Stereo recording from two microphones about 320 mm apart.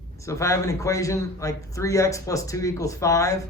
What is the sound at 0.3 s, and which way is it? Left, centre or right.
A man's voice, centre.